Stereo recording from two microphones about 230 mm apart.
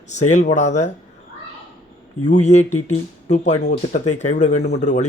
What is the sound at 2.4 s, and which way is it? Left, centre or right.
Speech, left.